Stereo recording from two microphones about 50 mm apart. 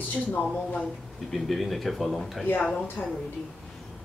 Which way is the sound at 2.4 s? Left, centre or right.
Left.